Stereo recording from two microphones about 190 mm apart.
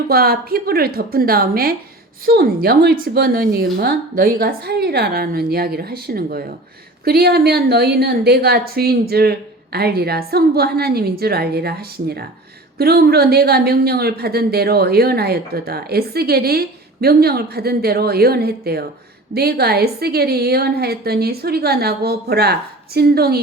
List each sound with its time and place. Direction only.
0.1 s a woman's voice: 55° right (ahead or behind)